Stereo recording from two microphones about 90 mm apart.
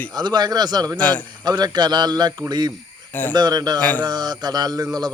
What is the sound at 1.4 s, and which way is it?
Speech, 50° right (ahead or behind).